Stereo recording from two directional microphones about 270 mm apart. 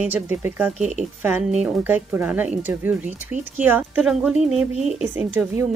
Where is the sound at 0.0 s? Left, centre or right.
Centre.